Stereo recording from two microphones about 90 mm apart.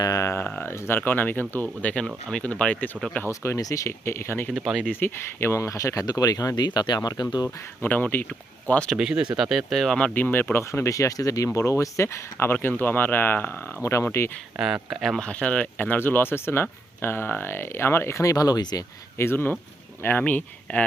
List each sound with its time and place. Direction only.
0.0 s a sound: 35° left (ahead or behind)
0.6 s speech: 25° left (ahead or behind)
3.2 s speech: 30° left (ahead or behind)
4.4 s speech: centre (ahead or behind)
4.9 s speech: 25° left (ahead or behind); by 6.7 s 40° left (ahead or behind)
6.7 s speech: 55° left (ahead or behind)
7.4 s speech: 20° left (ahead or behind)
9.0 s speech: 10° right (ahead or behind)
10.2 s speech: 20° left (ahead or behind)
14.6 s speech: 10° right (ahead or behind)
15.0 s speech: centre (ahead or behind)
15.3 s speech: 15° left (ahead or behind); by 18.8 s 45° left (ahead or behind)
19.1 s speech: 25° left (ahead or behind)